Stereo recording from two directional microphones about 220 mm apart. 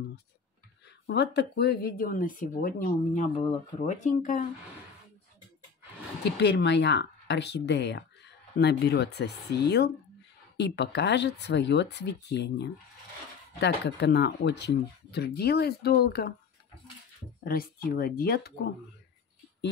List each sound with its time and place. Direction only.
0.8 s speech: 50° left (ahead or behind); by 4.5 s 35° left (ahead or behind)
6.2 s speech: 50° left (ahead or behind)
17.4 s speech: 40° left (ahead or behind)